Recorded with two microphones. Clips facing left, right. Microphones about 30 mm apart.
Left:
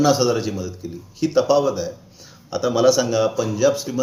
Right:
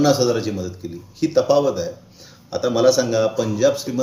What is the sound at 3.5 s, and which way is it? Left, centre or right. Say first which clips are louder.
Speech: right 1 dB; centre.